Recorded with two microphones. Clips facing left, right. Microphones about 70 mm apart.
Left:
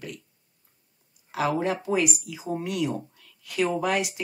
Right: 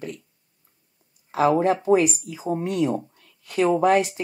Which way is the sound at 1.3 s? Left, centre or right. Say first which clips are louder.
Right 6 dB; right.